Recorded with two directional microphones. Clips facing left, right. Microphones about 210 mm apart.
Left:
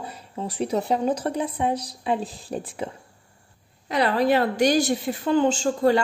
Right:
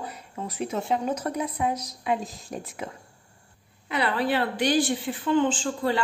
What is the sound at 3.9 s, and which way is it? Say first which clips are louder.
Speech: left 5 dB; 40° left (ahead or behind).